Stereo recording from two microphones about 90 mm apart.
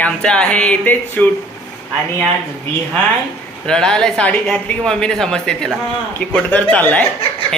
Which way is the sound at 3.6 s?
5° left (ahead or behind).